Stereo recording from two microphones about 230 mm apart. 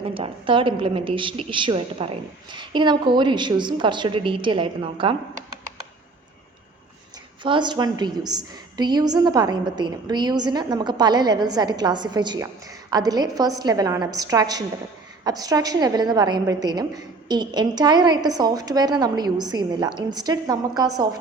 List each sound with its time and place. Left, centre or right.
0.1 s a woman's voice: right
7.4 s a woman's voice: right